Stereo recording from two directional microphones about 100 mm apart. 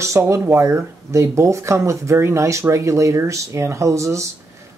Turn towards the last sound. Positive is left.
turn(degrees=-30)  # may be behind; listen again after turning